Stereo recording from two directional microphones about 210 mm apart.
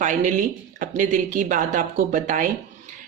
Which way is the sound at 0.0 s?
35° right (ahead or behind).